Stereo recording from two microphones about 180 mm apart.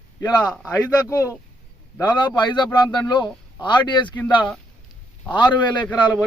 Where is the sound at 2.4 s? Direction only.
25° left (ahead or behind).